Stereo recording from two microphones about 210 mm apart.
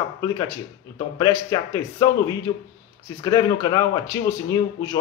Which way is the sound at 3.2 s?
15° left (ahead or behind).